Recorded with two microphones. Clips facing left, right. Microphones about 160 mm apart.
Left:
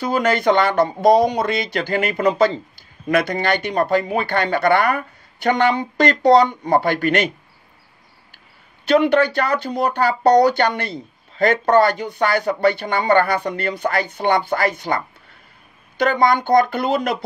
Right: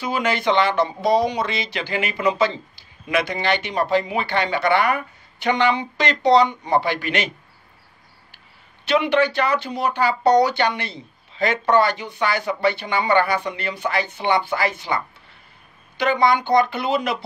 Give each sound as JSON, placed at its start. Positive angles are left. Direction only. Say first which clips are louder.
{"t": 0.0, "sound": "speech", "louder": "left 4 dB", "side_deg": 45}
{"t": 8.8, "sound": "speech", "louder": "left 4 dB", "side_deg": 45}